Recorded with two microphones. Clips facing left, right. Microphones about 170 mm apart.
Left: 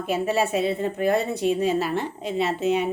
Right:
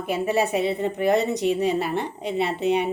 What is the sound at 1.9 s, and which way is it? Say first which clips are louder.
Speech: even; 60° right (ahead or behind).